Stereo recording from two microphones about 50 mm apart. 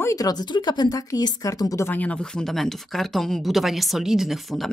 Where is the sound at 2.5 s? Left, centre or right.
Centre.